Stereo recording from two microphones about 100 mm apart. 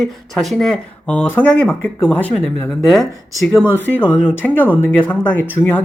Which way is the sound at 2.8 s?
Centre (ahead or behind).